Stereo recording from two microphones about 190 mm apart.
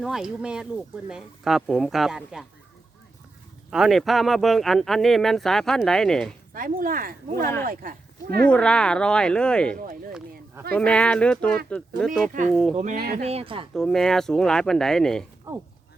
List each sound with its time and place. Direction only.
0.0 s speech: centre (ahead or behind)
3.7 s speech: centre (ahead or behind)
6.5 s speech: 45° right (ahead or behind)
8.4 s speech: 5° left (ahead or behind)
9.7 s speech: 45° right (ahead or behind)
10.8 s speech: 5° left (ahead or behind)
12.7 s speech: 45° right (ahead or behind)
13.2 s speech: 30° right (ahead or behind)
13.7 s speech: centre (ahead or behind)